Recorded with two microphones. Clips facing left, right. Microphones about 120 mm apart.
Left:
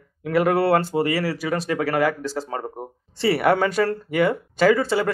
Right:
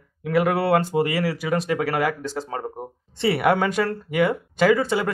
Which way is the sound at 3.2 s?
20° right (ahead or behind).